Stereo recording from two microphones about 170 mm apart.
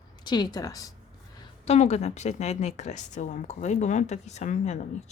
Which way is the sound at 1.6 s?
40° left (ahead or behind).